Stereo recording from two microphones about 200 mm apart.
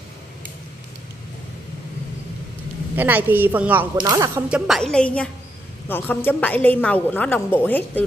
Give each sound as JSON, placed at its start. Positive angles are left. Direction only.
{"t": 3.0, "sound": "a woman's voice", "side_deg": -10}
{"t": 4.5, "sound": "a woman's voice", "side_deg": -5}